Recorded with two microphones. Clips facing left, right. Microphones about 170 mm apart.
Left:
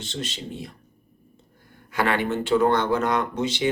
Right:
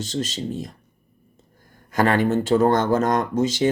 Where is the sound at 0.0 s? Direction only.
40° right (ahead or behind).